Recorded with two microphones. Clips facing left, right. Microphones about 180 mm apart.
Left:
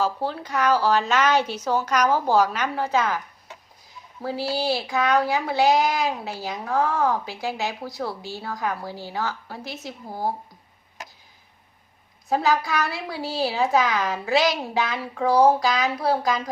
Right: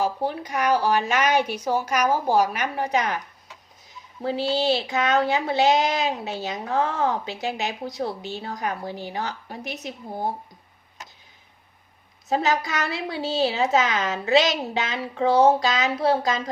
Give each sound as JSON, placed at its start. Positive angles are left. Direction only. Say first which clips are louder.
{"t": 0.0, "sound": "speech", "louder": "even", "side_deg": -15}
{"t": 4.2, "sound": "speech", "louder": "right 2 dB", "side_deg": -20}
{"t": 12.3, "sound": "speech", "louder": "left 1 dB", "side_deg": -20}